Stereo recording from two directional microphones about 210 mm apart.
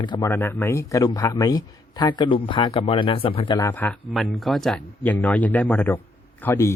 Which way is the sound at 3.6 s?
10° left (ahead or behind).